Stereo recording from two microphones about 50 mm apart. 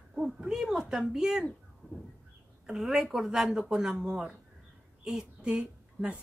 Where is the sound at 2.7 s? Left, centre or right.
Centre.